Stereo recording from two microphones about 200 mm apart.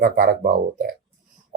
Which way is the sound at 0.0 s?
45° right (ahead or behind).